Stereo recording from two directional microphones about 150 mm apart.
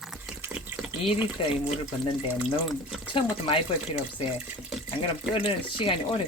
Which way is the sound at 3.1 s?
35° left (ahead or behind).